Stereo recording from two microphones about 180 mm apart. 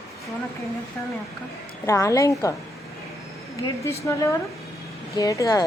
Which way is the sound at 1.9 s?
15° left (ahead or behind).